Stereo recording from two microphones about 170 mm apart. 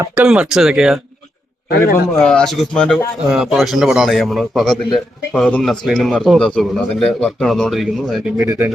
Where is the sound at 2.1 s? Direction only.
5° left (ahead or behind).